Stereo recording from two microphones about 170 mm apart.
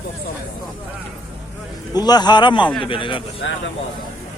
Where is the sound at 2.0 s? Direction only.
25° left (ahead or behind).